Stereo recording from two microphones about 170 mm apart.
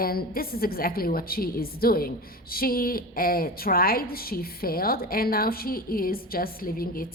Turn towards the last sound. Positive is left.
turn(degrees=60)  # may be behind; listen again after turning